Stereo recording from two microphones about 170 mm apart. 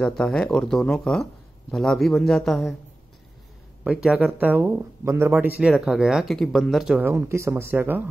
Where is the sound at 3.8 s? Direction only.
5° right (ahead or behind).